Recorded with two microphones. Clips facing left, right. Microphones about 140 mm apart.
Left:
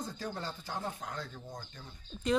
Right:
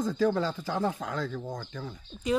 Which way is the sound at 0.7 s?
90° right.